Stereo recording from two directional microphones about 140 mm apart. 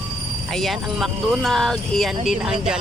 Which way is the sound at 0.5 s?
Centre (ahead or behind).